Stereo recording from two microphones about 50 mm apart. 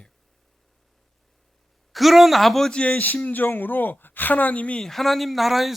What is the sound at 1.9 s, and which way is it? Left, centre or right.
Speech, centre.